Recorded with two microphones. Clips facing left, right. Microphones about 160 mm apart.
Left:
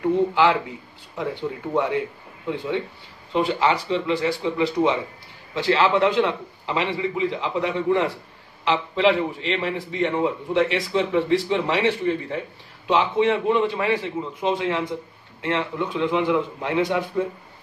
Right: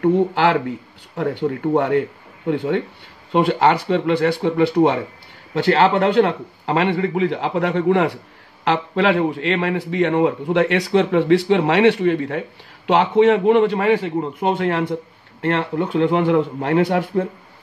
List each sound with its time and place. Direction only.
0.0 s a man's voice: 60° right (ahead or behind)